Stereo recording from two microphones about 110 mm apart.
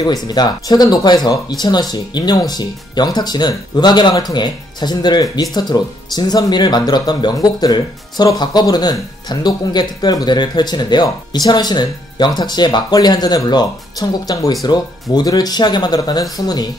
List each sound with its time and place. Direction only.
0.0 s speech: 40° left (ahead or behind)